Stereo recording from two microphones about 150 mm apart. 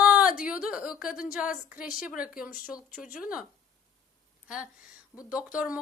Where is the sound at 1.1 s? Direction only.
10° right (ahead or behind).